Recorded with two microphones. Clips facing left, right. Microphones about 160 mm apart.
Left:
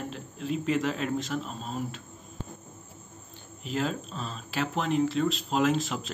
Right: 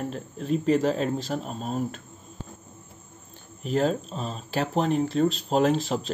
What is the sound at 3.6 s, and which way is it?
Speech, 40° right (ahead or behind).